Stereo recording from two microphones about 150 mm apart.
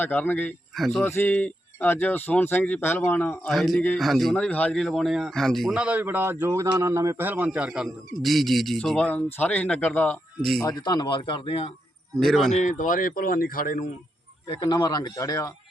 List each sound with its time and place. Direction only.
0.0 s speech: 10° left (ahead or behind)
0.8 s speech: centre (ahead or behind)
1.0 s speech: 15° left (ahead or behind)
10.6 s speech: 25° left (ahead or behind)
12.1 s speech: centre (ahead or behind)
12.5 s speech: 55° left (ahead or behind)
14.6 s speech: 25° left (ahead or behind)